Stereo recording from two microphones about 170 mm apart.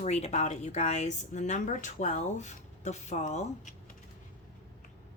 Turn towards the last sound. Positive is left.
turn(degrees=45)  # may be behind; listen again after turning